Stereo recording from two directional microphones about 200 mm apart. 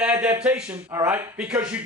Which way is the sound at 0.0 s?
5° right (ahead or behind).